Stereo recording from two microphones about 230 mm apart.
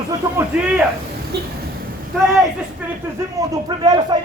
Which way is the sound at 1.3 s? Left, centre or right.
Right.